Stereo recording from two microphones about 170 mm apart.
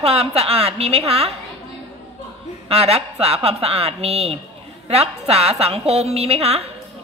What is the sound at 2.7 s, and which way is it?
A woman's voice, 35° right (ahead or behind).